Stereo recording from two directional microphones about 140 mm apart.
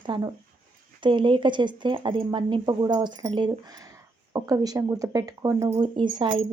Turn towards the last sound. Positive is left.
turn(degrees=-35)  # may be behind; listen again after turning